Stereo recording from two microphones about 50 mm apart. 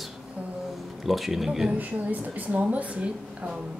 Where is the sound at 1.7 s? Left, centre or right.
Right.